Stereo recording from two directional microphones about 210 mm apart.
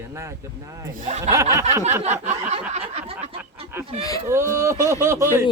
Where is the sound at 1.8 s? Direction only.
35° right (ahead or behind).